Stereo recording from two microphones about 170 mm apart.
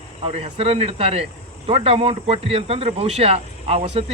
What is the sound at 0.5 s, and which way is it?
Speech, 35° right (ahead or behind).